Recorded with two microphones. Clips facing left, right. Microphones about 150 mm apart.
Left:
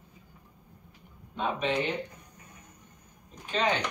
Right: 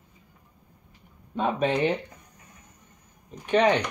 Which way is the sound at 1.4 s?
50° right (ahead or behind).